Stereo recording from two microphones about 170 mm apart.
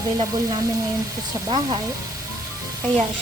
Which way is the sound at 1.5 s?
25° right (ahead or behind).